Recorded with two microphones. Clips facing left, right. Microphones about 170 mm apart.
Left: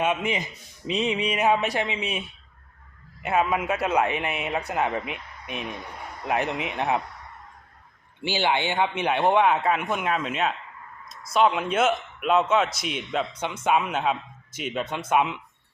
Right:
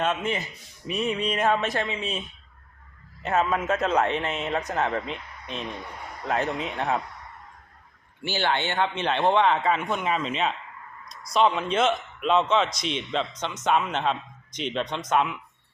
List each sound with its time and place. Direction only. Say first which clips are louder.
0.0 s a man's voice: left 1 dB; 10° left (ahead or behind)
3.2 s a man's voice: even; 10° left (ahead or behind)
8.2 s a man's voice: left 2 dB; 15° left (ahead or behind)